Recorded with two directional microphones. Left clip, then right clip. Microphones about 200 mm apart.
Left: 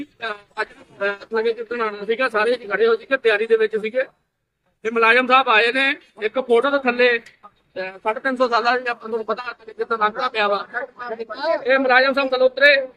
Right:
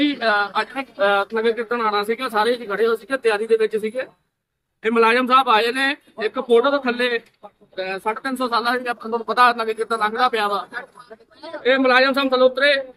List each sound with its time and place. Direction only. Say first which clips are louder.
0.2 s speech: right 8 dB; 20° right (ahead or behind)